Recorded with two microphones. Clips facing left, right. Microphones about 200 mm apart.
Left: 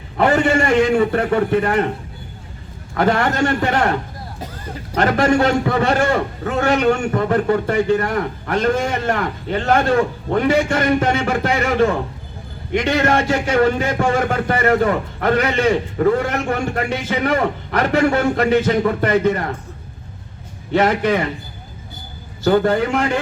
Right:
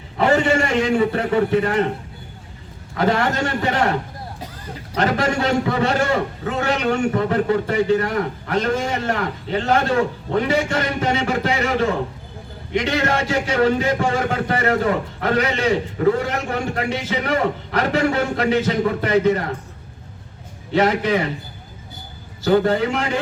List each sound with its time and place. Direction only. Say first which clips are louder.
0.2 s a man's voice: left 1 dB; 55° left (ahead or behind)
2.9 s a man's voice: left 2 dB; 50° left (ahead or behind)
4.9 s a man's voice: left 4 dB; 50° left (ahead or behind)
20.7 s a man's voice: left 1 dB; 50° left (ahead or behind)
22.4 s a man's voice: left 1 dB; 50° left (ahead or behind)